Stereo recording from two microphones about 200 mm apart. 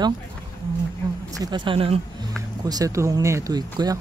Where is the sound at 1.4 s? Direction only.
20° right (ahead or behind).